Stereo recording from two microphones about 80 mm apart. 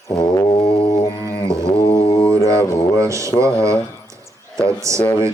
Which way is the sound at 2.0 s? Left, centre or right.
Left.